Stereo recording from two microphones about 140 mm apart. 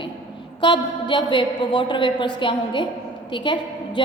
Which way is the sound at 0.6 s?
35° left (ahead or behind).